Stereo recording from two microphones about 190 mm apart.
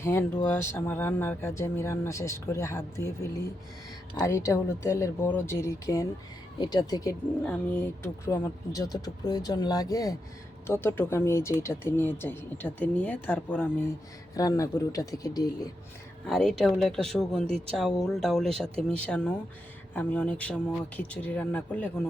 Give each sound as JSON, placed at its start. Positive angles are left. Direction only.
{"t": 0.0, "sound": "speech", "side_deg": 15}
{"t": 16.2, "sound": "speech", "side_deg": 0}